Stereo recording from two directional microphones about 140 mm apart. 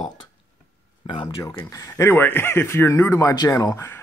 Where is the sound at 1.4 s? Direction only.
20° left (ahead or behind).